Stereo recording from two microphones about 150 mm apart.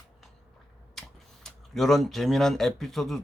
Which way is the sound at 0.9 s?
Centre (ahead or behind).